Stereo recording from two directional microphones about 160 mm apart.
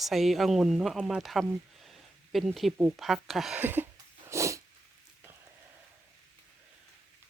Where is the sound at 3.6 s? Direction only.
10° right (ahead or behind).